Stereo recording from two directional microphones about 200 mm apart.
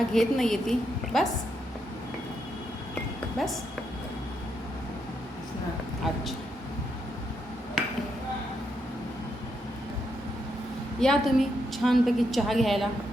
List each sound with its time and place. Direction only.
0.1 s a woman's voice: centre (ahead or behind)
3.3 s a woman's voice: centre (ahead or behind)
11.0 s a woman's voice: centre (ahead or behind)